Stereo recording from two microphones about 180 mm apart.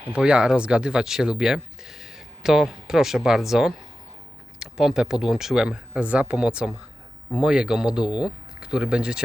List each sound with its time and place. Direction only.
0.1 s speech: 5° right (ahead or behind)